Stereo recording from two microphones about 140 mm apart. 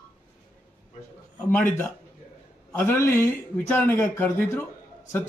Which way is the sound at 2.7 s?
15° left (ahead or behind).